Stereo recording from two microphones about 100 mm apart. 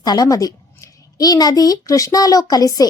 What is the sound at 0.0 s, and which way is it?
Speech, 40° left (ahead or behind).